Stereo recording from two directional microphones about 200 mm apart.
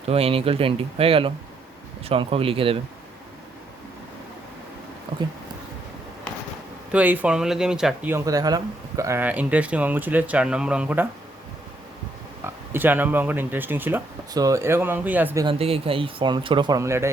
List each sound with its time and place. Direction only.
0.1 s speech: 30° right (ahead or behind)
6.9 s speech: 10° right (ahead or behind)
12.7 s speech: 10° right (ahead or behind)
15.4 s speech: 30° right (ahead or behind); by 17.1 s 15° right (ahead or behind)